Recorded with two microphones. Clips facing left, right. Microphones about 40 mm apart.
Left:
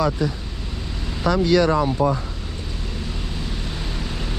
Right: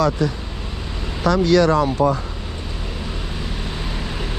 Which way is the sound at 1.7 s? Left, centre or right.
Right.